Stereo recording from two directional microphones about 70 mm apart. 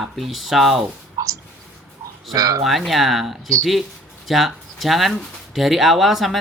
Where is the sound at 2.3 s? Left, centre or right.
Right.